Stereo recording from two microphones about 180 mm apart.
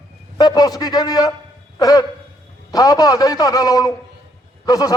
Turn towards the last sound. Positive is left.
turn(degrees=20)  # may be behind; listen again after turning